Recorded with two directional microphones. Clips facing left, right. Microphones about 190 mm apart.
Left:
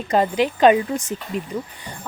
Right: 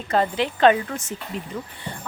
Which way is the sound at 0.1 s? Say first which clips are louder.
Left 3 dB; 15° left (ahead or behind).